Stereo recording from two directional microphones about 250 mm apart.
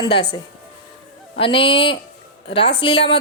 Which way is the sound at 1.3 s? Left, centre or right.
Left.